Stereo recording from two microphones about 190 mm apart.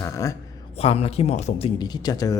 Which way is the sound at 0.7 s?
30° left (ahead or behind).